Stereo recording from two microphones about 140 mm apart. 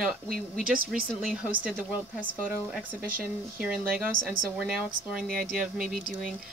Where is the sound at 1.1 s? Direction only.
5° right (ahead or behind).